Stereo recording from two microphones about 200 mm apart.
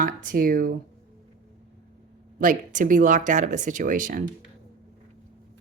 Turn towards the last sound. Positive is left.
turn(degrees=-45)  # may be behind; listen again after turning